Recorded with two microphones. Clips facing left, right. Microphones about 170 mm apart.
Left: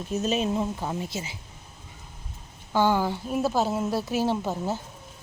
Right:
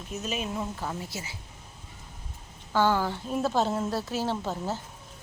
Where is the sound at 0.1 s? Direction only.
30° left (ahead or behind).